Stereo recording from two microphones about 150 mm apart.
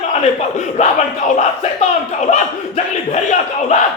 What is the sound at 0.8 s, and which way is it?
Speech, 45° left (ahead or behind).